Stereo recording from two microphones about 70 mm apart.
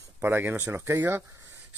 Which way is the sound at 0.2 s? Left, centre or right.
Right.